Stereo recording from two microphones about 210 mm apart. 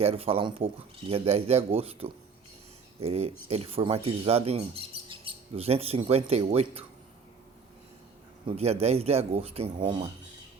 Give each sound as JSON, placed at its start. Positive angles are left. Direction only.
{"t": 0.0, "sound": "speech", "side_deg": -30}
{"t": 8.4, "sound": "speech", "side_deg": -30}